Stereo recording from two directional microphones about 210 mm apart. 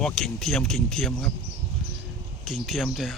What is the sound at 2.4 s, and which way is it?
Speech, centre (ahead or behind).